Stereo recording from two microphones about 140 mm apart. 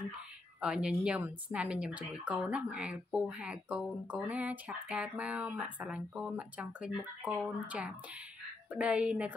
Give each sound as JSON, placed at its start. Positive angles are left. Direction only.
{"t": 0.6, "sound": "speech", "side_deg": -5}